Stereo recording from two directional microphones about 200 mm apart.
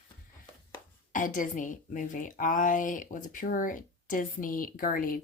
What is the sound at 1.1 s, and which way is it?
A woman's voice, 40° left (ahead or behind).